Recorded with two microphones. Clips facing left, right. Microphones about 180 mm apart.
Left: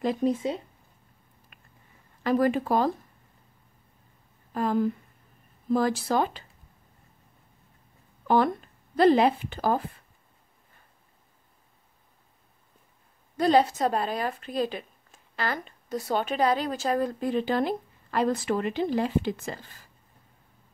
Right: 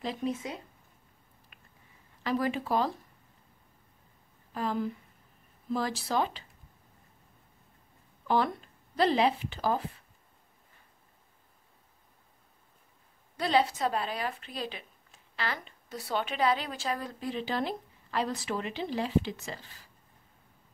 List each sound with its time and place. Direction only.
0.0 s speech: 50° left (ahead or behind)
0.3 s speech: 30° left (ahead or behind)
1.5 s a sound: 50° left (ahead or behind)
2.2 s speech: 50° left (ahead or behind)
4.6 s speech: 50° left (ahead or behind)
8.3 s speech: 50° left (ahead or behind)
13.4 s speech: 45° left (ahead or behind)